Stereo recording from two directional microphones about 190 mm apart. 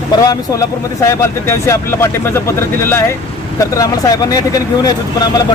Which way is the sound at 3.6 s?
20° left (ahead or behind).